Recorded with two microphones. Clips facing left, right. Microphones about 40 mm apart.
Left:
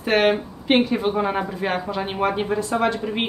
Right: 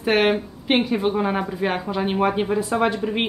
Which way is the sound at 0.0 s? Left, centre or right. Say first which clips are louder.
Even; centre.